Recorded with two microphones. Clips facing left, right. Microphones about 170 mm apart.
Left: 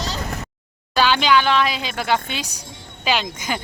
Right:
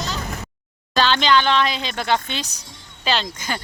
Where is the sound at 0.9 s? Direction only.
10° left (ahead or behind).